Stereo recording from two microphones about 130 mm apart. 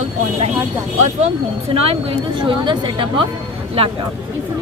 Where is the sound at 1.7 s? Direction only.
50° right (ahead or behind).